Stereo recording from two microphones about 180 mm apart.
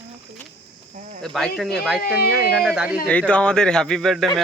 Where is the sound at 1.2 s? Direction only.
Centre (ahead or behind).